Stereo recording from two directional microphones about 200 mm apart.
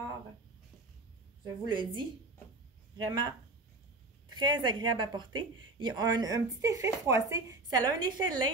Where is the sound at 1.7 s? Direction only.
25° right (ahead or behind).